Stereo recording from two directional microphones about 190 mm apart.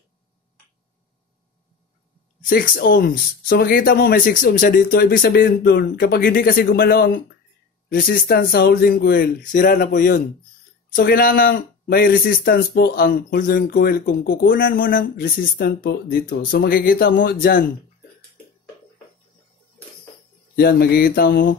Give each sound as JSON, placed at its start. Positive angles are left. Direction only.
{"t": 2.5, "sound": "speech", "side_deg": 50}
{"t": 20.5, "sound": "speech", "side_deg": 55}